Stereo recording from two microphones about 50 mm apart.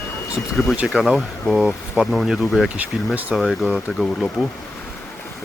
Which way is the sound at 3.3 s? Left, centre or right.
Centre.